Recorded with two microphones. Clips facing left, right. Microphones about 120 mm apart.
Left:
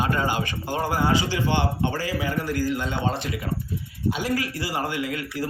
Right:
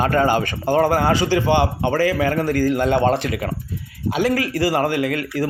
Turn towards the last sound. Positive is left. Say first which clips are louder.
# right 7 dB
turn(degrees=-70)  # may be behind; listen again after turning